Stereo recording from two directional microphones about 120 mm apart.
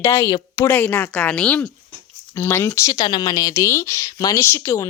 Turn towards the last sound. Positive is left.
turn(degrees=25)  # may be behind; listen again after turning